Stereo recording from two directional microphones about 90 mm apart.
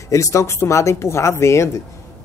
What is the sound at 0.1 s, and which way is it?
Speech, 35° left (ahead or behind).